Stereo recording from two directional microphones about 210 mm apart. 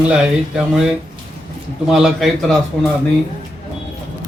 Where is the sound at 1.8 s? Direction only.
Centre (ahead or behind).